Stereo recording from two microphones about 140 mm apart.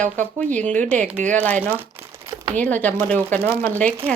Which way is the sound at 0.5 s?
10° left (ahead or behind).